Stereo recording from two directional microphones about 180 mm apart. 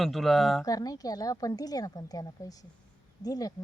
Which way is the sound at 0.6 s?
20° left (ahead or behind).